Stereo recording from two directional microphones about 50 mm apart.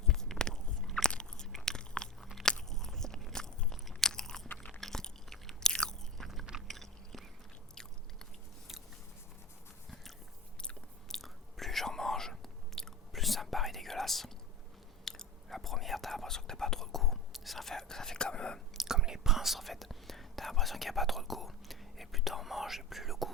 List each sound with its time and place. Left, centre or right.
0.1 s biting: centre
2.2 s crunch: centre
3.7 s biting: centre
4.8 s chewing: centre
6.1 s chewing: centre
6.7 s biting: centre
11.1 s chewing: centre
15.0 s whispering: centre
18.9 s whispering: centre